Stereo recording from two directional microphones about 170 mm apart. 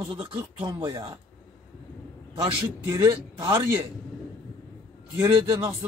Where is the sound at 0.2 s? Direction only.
30° right (ahead or behind).